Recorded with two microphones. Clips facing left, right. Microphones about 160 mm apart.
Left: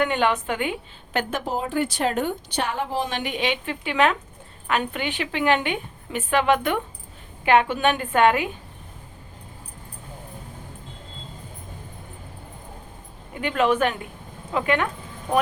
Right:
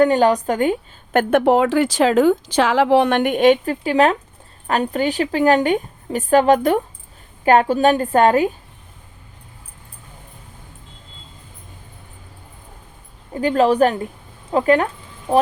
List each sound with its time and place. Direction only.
0.0 s a woman's voice: 35° right (ahead or behind)
13.3 s a woman's voice: 35° right (ahead or behind)